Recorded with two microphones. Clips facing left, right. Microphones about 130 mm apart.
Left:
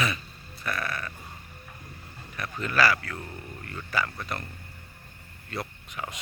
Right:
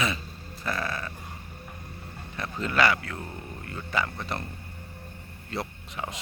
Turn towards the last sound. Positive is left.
turn(degrees=-25)  # may be behind; listen again after turning